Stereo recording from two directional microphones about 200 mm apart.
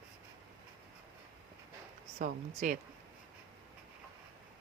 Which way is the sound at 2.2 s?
40° right (ahead or behind).